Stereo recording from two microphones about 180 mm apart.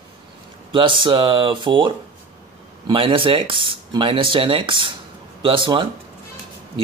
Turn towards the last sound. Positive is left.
turn(degrees=-25)  # may be behind; listen again after turning